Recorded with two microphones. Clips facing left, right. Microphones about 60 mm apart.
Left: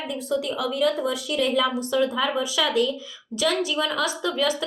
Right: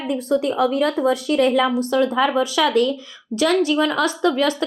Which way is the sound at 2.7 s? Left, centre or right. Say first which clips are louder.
Right 5 dB; right.